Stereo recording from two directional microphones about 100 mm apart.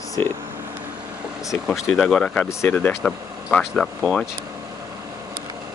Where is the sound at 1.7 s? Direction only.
Centre (ahead or behind).